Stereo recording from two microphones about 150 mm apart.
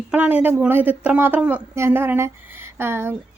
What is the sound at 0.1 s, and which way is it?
A woman's voice, 10° right (ahead or behind).